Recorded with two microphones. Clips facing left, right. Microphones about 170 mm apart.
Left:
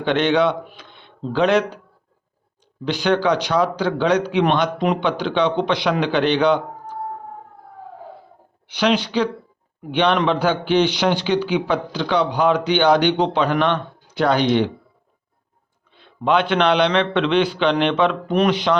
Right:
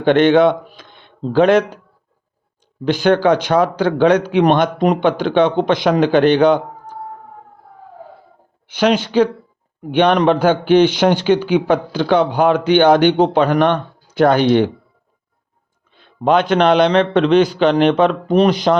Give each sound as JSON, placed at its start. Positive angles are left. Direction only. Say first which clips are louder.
{"t": 0.0, "sound": "a man's voice", "louder": "right 6 dB", "side_deg": -50}
{"t": 2.8, "sound": "a man's voice", "louder": "right 5 dB", "side_deg": -50}
{"t": 8.6, "sound": "a man's voice", "louder": "right 4 dB", "side_deg": -45}
{"t": 16.0, "sound": "a man's voice", "louder": "right 4 dB", "side_deg": -45}